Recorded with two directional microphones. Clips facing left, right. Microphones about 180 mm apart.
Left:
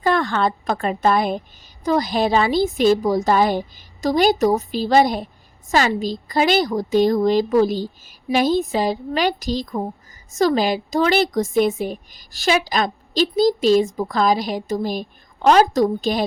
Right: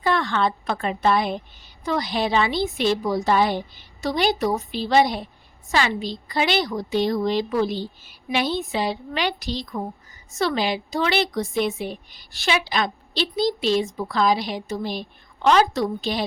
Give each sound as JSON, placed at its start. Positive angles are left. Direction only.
{"t": 0.0, "sound": "a woman's voice", "side_deg": 45}